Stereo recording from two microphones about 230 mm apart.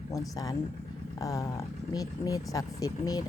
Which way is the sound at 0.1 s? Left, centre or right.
Centre.